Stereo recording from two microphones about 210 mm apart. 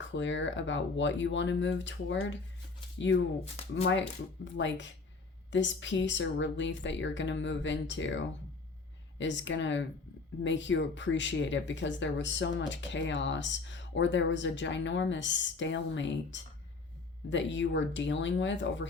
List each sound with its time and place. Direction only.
0.0 s speech: 60° left (ahead or behind)
3.4 s speech: 30° left (ahead or behind)
4.5 s speech: 60° left (ahead or behind)